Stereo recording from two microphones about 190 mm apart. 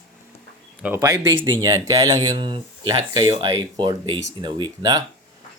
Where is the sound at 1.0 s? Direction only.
20° right (ahead or behind).